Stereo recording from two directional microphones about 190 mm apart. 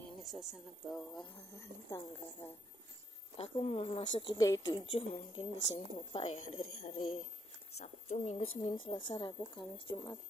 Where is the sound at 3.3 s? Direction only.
30° left (ahead or behind).